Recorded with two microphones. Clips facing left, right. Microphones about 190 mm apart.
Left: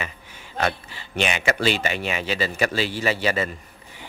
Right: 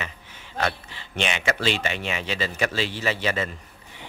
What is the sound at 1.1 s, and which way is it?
Speech, 10° left (ahead or behind).